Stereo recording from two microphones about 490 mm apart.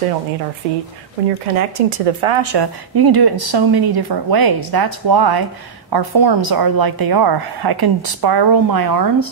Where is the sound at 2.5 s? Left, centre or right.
Right.